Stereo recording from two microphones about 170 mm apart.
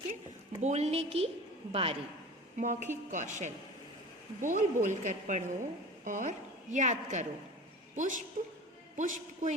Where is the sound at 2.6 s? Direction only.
45° right (ahead or behind).